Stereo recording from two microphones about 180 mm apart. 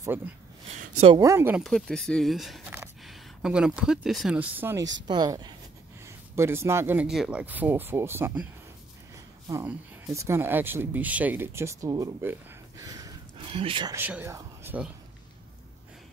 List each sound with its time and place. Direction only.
0.0 s speech: 10° right (ahead or behind)
0.7 s a sound: 35° right (ahead or behind)
1.1 s speech: 15° right (ahead or behind)
1.6 s a woman's voice: centre (ahead or behind)
9.7 s speech: 15° right (ahead or behind)
13.9 s speech: 10° right (ahead or behind)